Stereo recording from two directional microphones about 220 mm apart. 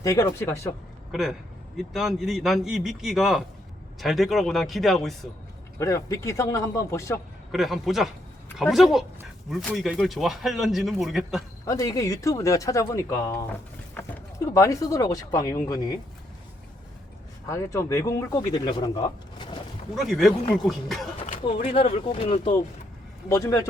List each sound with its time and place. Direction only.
0.0 s speech: 15° left (ahead or behind)
1.1 s speech: centre (ahead or behind)
5.8 s speech: 15° left (ahead or behind)
7.5 s speech: centre (ahead or behind)
11.6 s speech: 15° left (ahead or behind)
17.5 s speech: 15° left (ahead or behind)
20.0 s speech: centre (ahead or behind)
21.4 s speech: 25° left (ahead or behind)
23.3 s speech: 15° left (ahead or behind)